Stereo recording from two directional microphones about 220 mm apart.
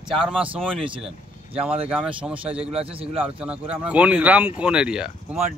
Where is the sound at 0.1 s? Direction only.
Centre (ahead or behind).